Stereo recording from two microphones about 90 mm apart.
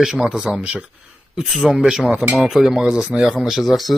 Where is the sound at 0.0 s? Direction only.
5° right (ahead or behind).